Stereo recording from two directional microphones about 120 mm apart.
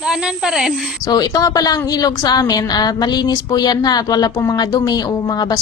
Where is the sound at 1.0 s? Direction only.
35° left (ahead or behind).